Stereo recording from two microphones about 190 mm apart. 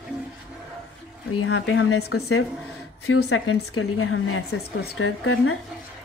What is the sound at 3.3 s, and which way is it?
A woman's voice, 90° left.